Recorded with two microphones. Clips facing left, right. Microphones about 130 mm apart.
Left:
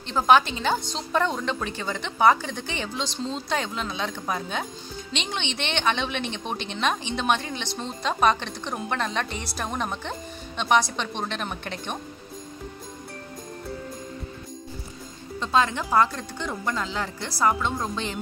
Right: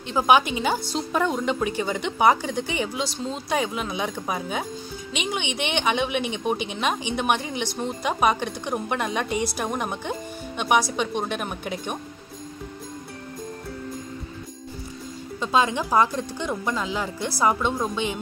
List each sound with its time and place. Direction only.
0.0 s a woman's voice: 10° right (ahead or behind)
15.4 s a woman's voice: 15° right (ahead or behind)